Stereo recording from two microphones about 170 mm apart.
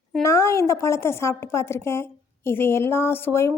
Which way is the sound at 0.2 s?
15° left (ahead or behind).